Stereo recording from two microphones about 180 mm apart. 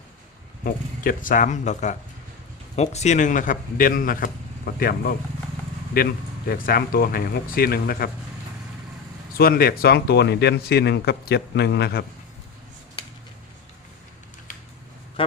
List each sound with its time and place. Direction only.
0.6 s a man's voice: 50° left (ahead or behind)
9.4 s speech: 55° left (ahead or behind)